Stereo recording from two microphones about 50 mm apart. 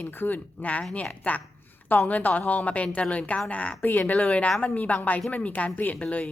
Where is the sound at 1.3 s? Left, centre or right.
Left.